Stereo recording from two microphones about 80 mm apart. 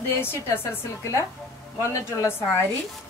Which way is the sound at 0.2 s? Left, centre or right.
Left.